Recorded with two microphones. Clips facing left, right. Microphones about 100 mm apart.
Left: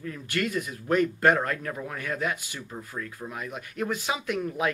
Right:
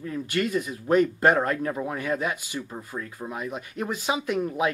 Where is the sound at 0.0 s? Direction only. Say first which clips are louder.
Right 3 dB; 20° right (ahead or behind).